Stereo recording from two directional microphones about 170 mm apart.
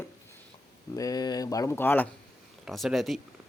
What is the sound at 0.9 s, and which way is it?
Speech, 20° left (ahead or behind).